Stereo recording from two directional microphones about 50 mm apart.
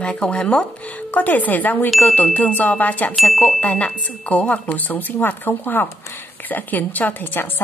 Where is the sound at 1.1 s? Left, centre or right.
Left.